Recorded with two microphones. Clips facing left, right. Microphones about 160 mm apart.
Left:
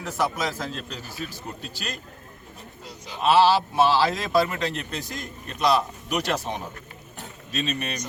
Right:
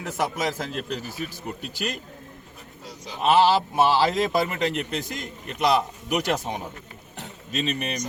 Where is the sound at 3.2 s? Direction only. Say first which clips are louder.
Even; 15° right (ahead or behind).